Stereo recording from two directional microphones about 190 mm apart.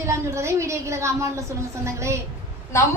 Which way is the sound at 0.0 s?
15° right (ahead or behind).